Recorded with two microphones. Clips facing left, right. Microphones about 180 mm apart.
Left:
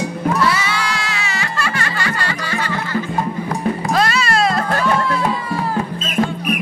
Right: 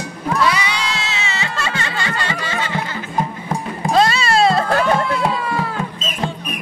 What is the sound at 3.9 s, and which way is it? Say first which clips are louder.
Music: right 5 dB; 25° right (ahead or behind).